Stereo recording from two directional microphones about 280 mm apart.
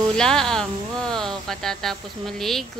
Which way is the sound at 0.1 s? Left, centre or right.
Centre.